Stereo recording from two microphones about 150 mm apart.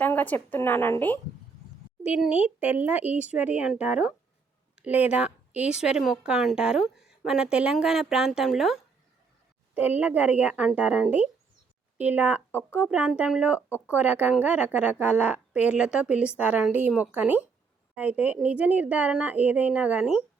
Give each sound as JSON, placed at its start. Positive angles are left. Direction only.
{"t": 0.0, "sound": "a woman's voice", "side_deg": 10}
{"t": 2.1, "sound": "a woman's voice", "side_deg": -10}
{"t": 13.7, "sound": "speech", "side_deg": 15}
{"t": 13.9, "sound": "a woman's voice", "side_deg": -10}